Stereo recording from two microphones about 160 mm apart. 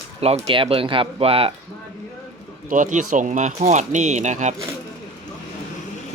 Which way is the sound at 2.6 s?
55° right (ahead or behind).